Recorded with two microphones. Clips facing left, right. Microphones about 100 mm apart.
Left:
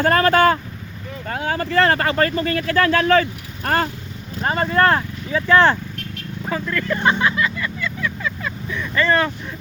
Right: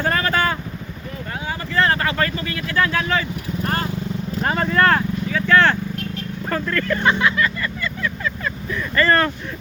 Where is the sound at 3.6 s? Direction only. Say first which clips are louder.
Left 5 dB; 90° left.